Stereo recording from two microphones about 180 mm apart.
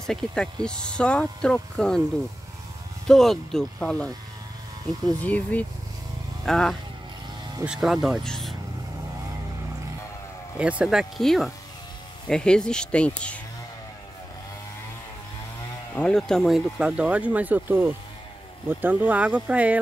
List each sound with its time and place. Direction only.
0.0 s speech: 5° left (ahead or behind)
3.1 s speech: centre (ahead or behind)
10.6 s speech: 5° right (ahead or behind)
15.9 s speech: 5° left (ahead or behind)